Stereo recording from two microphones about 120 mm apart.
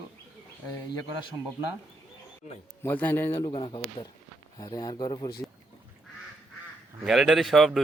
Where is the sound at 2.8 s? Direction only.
15° left (ahead or behind).